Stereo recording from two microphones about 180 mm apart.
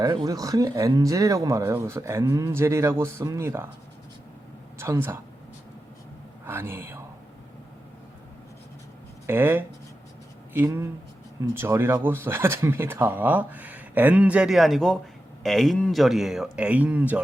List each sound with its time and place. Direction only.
0.0 s speech: 20° right (ahead or behind)
4.8 s speech: 15° right (ahead or behind)
6.4 s a man's voice: 10° right (ahead or behind)
9.2 s speech: 10° right (ahead or behind)